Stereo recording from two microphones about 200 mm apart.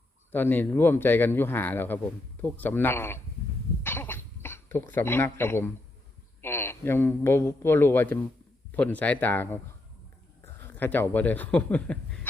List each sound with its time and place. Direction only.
0.3 s speech: 10° left (ahead or behind)
3.8 s cough: 10° left (ahead or behind)
6.4 s a man's voice: 10° left (ahead or behind)
10.6 s speech: 10° left (ahead or behind)